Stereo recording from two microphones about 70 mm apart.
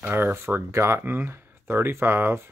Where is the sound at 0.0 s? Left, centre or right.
Right.